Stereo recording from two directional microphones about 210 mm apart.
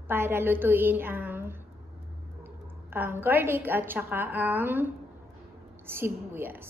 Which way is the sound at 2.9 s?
10° right (ahead or behind).